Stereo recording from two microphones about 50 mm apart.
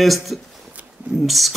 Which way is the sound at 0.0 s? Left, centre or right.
Centre.